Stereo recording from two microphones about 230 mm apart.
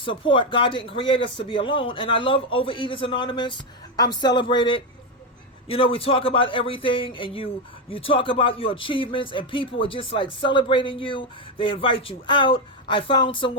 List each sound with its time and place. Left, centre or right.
0.0 s speech: left